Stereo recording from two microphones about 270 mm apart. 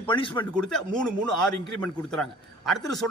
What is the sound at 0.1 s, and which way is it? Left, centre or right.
Speech, centre.